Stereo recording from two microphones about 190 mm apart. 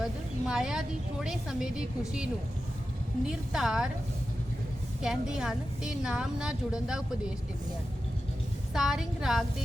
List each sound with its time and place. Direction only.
0.0 s a woman's voice: 5° right (ahead or behind)
5.0 s a woman's voice: 5° right (ahead or behind)
8.7 s a woman's voice: centre (ahead or behind)